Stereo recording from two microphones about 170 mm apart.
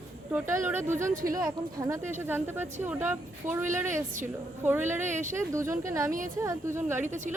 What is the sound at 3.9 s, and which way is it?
Speech, 50° right (ahead or behind).